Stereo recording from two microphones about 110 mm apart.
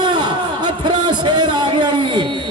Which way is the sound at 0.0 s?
40° right (ahead or behind).